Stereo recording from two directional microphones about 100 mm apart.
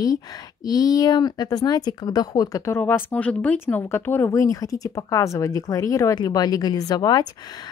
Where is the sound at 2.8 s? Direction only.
15° left (ahead or behind); by 7.3 s 45° left (ahead or behind).